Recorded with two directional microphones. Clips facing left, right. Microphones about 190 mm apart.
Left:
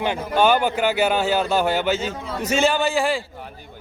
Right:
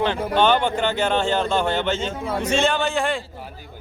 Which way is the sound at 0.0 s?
10° left (ahead or behind).